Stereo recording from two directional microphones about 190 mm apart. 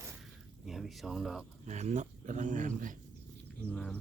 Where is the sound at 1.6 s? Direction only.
40° right (ahead or behind).